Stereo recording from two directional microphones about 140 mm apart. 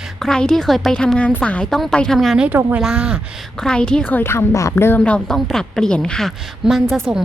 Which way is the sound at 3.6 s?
5° left (ahead or behind).